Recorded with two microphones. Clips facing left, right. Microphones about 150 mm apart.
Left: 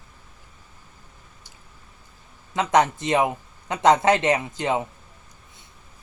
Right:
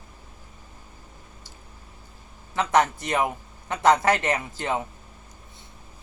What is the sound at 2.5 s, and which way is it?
A man's voice, 20° left (ahead or behind).